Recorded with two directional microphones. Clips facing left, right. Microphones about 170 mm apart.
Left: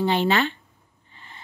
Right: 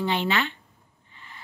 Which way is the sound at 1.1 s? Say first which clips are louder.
Left 1 dB; 35° left (ahead or behind).